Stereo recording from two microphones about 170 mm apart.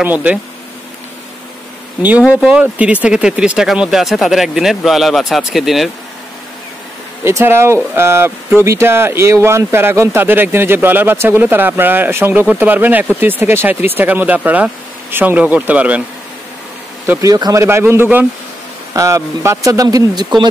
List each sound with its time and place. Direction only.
0.0 s speech: 10° right (ahead or behind)
2.0 s speech: 10° right (ahead or behind)
7.2 s speech: 15° right (ahead or behind)
17.0 s speech: 15° right (ahead or behind)